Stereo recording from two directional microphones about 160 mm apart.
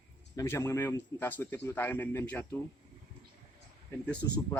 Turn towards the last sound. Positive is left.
turn(degrees=20)  # may be behind; listen again after turning